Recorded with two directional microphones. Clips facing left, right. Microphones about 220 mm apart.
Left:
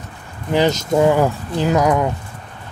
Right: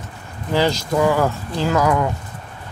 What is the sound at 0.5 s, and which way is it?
Speech, 20° left (ahead or behind).